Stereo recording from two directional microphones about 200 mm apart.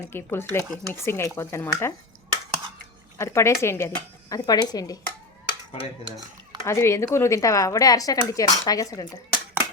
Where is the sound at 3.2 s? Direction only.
15° left (ahead or behind).